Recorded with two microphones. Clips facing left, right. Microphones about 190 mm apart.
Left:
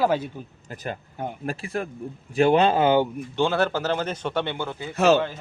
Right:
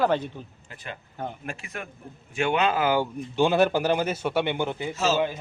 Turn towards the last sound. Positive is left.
turn(degrees=60)  # may be behind; listen again after turning